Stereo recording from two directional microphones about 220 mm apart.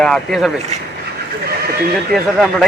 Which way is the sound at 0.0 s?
Centre (ahead or behind).